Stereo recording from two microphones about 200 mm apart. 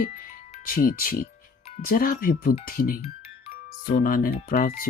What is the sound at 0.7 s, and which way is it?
Speech, 45° left (ahead or behind).